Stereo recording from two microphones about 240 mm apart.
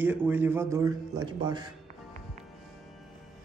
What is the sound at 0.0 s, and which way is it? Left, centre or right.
A man's voice, centre.